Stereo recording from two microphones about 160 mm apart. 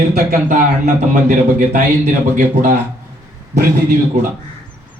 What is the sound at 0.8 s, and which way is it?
A man's voice, 50° right (ahead or behind).